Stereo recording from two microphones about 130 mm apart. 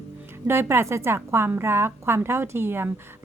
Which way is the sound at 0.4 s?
20° right (ahead or behind).